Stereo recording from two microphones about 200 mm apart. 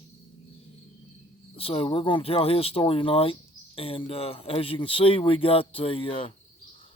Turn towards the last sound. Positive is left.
turn(degrees=25)  # may be behind; listen again after turning